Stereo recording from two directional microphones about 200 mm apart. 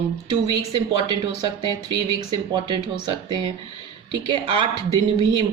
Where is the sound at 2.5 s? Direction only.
20° right (ahead or behind).